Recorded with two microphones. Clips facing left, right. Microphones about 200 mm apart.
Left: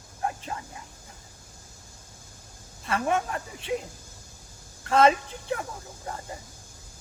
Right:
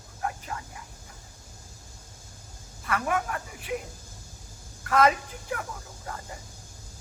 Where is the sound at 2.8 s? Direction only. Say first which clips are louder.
Left 2 dB; 25° left (ahead or behind).